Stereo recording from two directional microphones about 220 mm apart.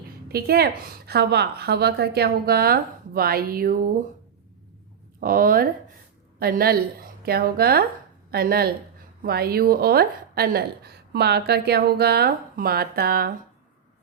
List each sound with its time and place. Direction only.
0.3 s a woman's voice: 45° right (ahead or behind)
5.2 s a woman's voice: 40° right (ahead or behind)